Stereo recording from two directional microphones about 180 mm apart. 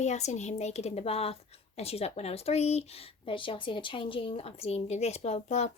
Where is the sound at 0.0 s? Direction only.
40° left (ahead or behind).